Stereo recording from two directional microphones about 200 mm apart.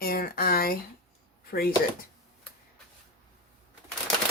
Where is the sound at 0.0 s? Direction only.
50° left (ahead or behind).